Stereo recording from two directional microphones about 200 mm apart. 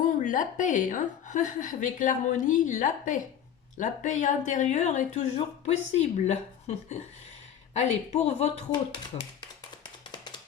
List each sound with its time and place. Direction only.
0.2 s a woman's voice: 40° left (ahead or behind)